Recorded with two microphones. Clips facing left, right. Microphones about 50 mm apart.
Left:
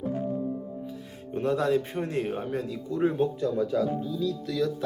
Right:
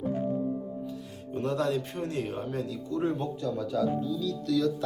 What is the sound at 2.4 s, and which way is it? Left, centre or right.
Speech, left.